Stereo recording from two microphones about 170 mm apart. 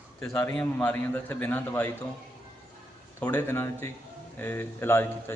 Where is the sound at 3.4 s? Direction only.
15° left (ahead or behind).